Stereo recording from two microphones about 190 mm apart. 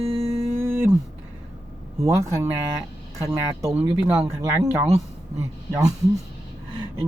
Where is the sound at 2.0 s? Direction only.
15° right (ahead or behind).